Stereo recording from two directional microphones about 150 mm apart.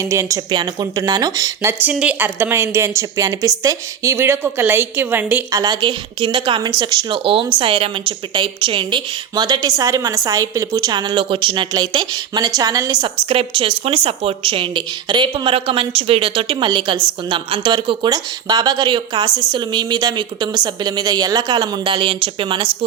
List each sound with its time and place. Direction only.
0.1 s a woman's voice: 20° right (ahead or behind)
1.8 s a woman's voice: 10° right (ahead or behind); by 13.1 s 25° right (ahead or behind)
13.2 s a woman's voice: 35° right (ahead or behind)